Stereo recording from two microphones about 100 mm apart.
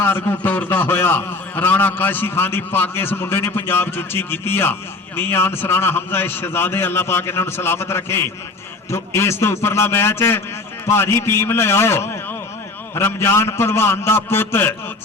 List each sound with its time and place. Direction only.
0.0 s a man's voice: 25° left (ahead or behind)